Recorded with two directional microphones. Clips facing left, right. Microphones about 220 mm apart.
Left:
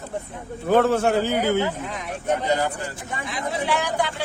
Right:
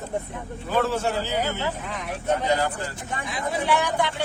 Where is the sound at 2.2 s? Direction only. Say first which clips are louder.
Left 1 dB; 15° left (ahead or behind).